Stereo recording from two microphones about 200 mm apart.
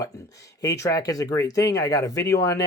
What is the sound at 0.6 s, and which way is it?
Speech, 15° left (ahead or behind).